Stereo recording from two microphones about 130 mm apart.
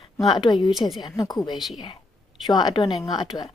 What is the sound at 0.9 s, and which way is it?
Speech, 30° left (ahead or behind).